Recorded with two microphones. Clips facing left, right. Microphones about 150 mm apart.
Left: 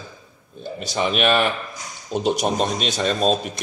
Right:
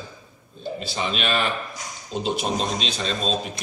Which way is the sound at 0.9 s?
55° left (ahead or behind).